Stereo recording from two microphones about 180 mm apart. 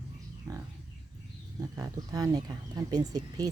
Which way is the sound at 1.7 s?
15° right (ahead or behind).